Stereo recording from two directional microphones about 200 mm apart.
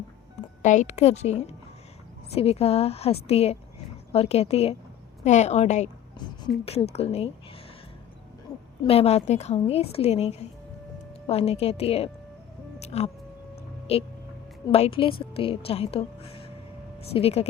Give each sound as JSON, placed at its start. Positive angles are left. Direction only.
{"t": 0.6, "sound": "a woman's voice", "side_deg": 35}
{"t": 6.9, "sound": "a woman's voice", "side_deg": 30}
{"t": 8.8, "sound": "a woman's voice", "side_deg": 30}
{"t": 12.8, "sound": "music", "side_deg": 30}
{"t": 13.9, "sound": "a woman's voice", "side_deg": 30}